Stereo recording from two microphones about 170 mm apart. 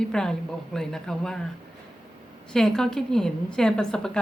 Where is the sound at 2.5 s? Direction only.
5° left (ahead or behind).